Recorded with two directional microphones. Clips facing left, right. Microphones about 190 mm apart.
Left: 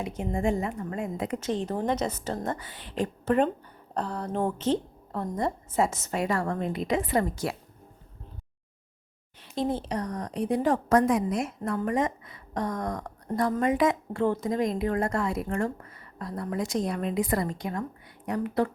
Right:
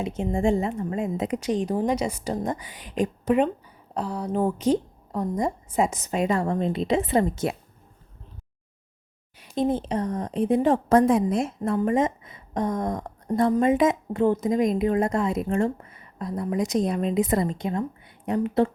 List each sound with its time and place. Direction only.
0.0 s a woman's voice: 25° right (ahead or behind)
9.4 s a woman's voice: 20° right (ahead or behind)